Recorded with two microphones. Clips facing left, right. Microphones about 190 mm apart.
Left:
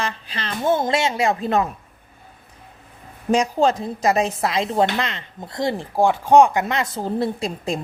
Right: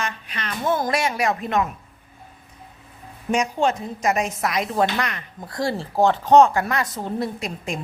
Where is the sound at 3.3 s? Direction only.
30° left (ahead or behind).